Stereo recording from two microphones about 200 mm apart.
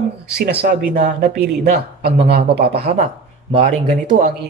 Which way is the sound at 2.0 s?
55° right (ahead or behind).